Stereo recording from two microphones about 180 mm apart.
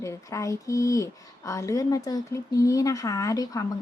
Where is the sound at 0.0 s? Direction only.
15° left (ahead or behind).